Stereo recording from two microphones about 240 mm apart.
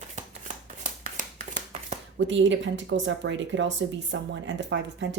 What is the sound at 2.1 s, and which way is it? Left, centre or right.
Speech, right.